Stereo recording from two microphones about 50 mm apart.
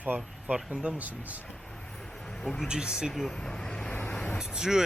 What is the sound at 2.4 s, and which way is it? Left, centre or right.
Speech, centre.